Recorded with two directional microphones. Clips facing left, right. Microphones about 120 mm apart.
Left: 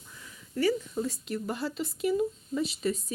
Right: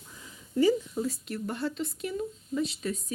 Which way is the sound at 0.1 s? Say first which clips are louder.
Right 4 dB; 20° right (ahead or behind).